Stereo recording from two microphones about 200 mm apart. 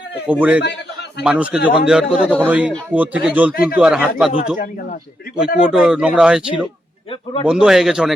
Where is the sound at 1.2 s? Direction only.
5° right (ahead or behind).